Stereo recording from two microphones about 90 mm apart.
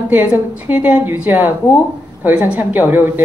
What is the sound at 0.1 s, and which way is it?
Speech, 20° right (ahead or behind).